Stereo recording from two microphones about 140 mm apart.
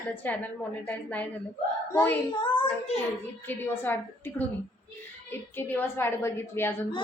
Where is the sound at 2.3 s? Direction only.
35° left (ahead or behind).